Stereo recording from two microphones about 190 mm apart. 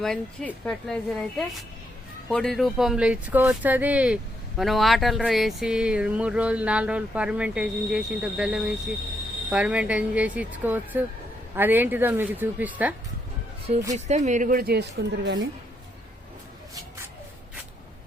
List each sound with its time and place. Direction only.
0.0 s speech: 5° left (ahead or behind)
13.9 s speech: 40° right (ahead or behind); by 15.4 s 60° right (ahead or behind)